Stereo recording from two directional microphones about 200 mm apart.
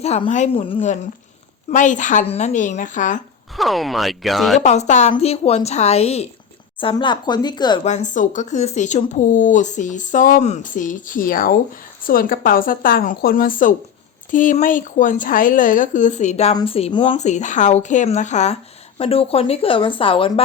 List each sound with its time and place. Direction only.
0.0 s speech: 30° left (ahead or behind)
3.6 s speech: centre (ahead or behind)
4.6 s speech: 35° left (ahead or behind)
7.9 s a woman's voice: 35° left (ahead or behind)